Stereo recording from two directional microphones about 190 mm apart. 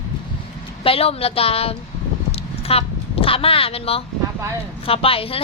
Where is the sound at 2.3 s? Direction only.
30° left (ahead or behind).